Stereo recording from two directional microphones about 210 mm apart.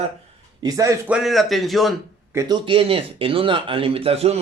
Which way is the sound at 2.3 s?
20° right (ahead or behind).